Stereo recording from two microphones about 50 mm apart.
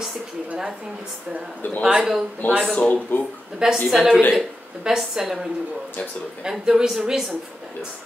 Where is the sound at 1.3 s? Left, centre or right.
Centre.